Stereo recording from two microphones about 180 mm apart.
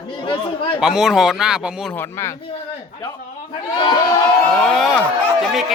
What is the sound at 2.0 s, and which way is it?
Speech, 15° left (ahead or behind).